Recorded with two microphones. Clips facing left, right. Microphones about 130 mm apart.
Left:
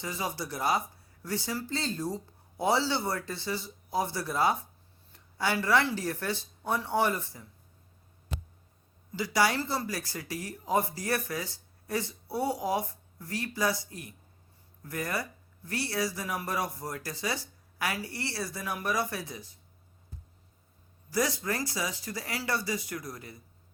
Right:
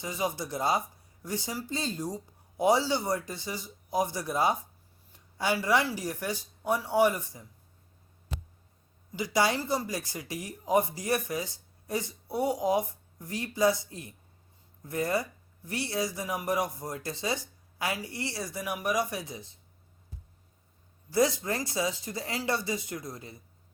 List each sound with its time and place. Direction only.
0.0 s speech: 20° right (ahead or behind)
9.1 s speech: 20° right (ahead or behind)
21.1 s speech: 25° right (ahead or behind)